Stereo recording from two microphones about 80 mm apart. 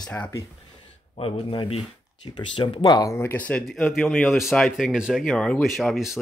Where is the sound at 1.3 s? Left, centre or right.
Left.